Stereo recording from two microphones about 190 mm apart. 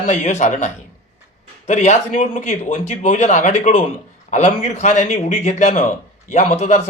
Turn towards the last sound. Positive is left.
turn(degrees=35)  # may be behind; listen again after turning